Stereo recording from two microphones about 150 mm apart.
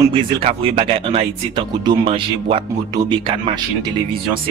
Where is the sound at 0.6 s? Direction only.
40° right (ahead or behind).